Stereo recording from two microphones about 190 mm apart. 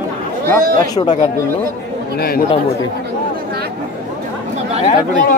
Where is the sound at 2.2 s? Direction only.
55° left (ahead or behind).